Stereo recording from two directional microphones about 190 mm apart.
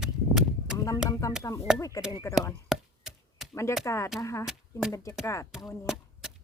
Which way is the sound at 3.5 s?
15° left (ahead or behind).